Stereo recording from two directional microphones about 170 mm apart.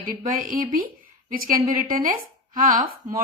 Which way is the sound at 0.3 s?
55° right (ahead or behind).